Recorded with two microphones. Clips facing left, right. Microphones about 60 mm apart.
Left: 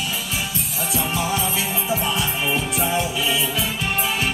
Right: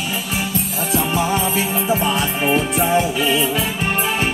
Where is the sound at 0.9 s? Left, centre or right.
Right.